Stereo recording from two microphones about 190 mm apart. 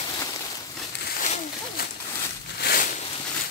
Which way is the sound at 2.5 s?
50° left (ahead or behind).